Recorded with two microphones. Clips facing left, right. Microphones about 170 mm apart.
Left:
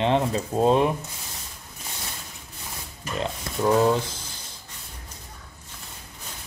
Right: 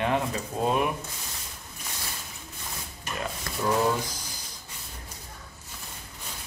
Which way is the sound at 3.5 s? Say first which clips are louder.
Left 4 dB; 25° left (ahead or behind).